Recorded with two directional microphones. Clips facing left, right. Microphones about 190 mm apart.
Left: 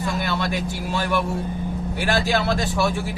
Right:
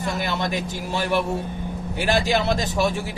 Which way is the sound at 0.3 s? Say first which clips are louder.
Left 1 dB; 20° right (ahead or behind).